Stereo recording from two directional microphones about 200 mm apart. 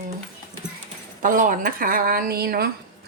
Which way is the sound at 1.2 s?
40° right (ahead or behind).